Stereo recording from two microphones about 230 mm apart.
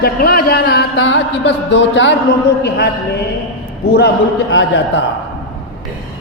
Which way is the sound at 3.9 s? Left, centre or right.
Left.